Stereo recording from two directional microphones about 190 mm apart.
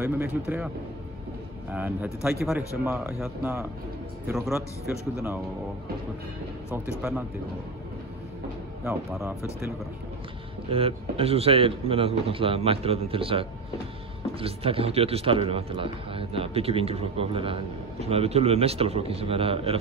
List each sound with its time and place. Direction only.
0.0 s speech: 10° right (ahead or behind)
1.7 s a man's voice: 10° right (ahead or behind)
2.8 s a man's voice: 10° right (ahead or behind)
4.6 s a man's voice: 15° left (ahead or behind)
6.7 s speech: 10° right (ahead or behind)
10.7 s a man's voice: 30° right (ahead or behind)